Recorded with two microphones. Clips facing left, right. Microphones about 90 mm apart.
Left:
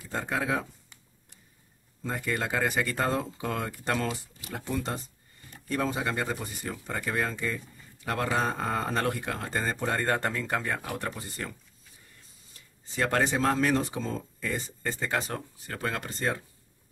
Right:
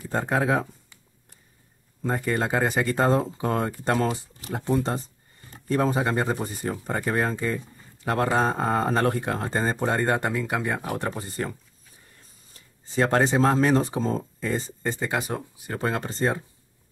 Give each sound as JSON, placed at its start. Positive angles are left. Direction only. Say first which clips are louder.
{"t": 0.0, "sound": "speech", "louder": "right 6 dB", "side_deg": -40}
{"t": 2.0, "sound": "speech", "louder": "right 6 dB", "side_deg": -40}
{"t": 10.9, "sound": "speech", "louder": "right 5 dB", "side_deg": -25}
{"t": 12.5, "sound": "speech", "louder": "right 6 dB", "side_deg": -30}
{"t": 15.8, "sound": "speech", "louder": "right 5 dB", "side_deg": -25}